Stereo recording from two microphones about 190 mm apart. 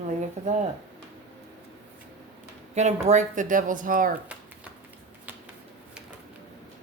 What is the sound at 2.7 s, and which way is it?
A woman's voice, 40° right (ahead or behind).